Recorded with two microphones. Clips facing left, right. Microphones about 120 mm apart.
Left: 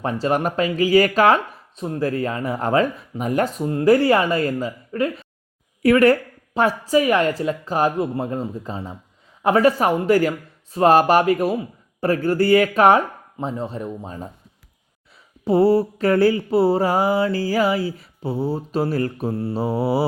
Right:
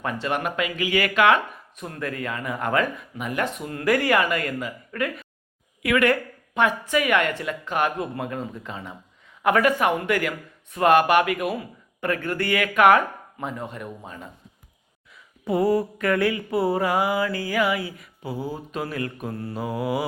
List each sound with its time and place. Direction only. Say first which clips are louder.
0.0 s speech: left 5 dB; 35° left (ahead or behind)
15.4 s speech: left 5 dB; 30° left (ahead or behind)